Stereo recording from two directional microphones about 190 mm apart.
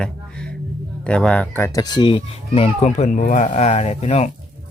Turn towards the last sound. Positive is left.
turn(degrees=35)  # may be behind; listen again after turning